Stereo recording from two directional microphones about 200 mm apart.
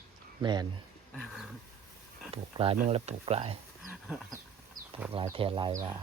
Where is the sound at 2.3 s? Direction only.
30° right (ahead or behind).